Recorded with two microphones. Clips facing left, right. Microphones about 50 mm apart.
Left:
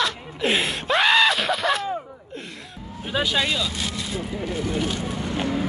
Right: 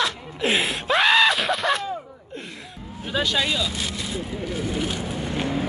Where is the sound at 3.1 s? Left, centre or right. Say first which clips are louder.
Even; centre.